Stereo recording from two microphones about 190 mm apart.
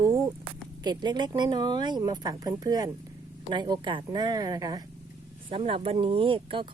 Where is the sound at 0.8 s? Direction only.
20° right (ahead or behind).